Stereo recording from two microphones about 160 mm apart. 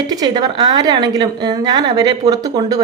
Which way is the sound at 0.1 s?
25° right (ahead or behind).